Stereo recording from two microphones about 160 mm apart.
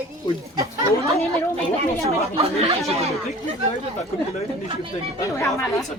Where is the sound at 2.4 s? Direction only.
40° right (ahead or behind).